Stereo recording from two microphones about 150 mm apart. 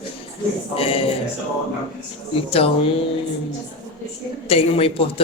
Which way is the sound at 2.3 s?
40° left (ahead or behind).